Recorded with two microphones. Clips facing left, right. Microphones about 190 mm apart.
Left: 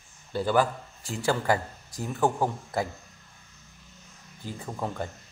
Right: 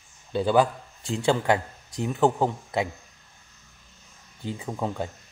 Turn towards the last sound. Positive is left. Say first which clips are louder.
# right 3 dB
turn(degrees=-15)  # may be behind; listen again after turning